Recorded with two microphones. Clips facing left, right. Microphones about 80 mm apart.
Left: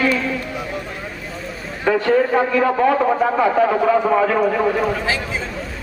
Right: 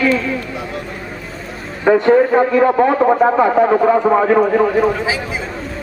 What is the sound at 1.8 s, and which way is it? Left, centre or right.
A man's voice, right.